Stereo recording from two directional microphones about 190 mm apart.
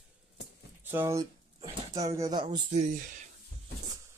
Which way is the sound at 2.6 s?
40° right (ahead or behind).